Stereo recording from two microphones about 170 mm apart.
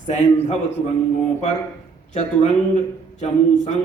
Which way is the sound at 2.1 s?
40° left (ahead or behind).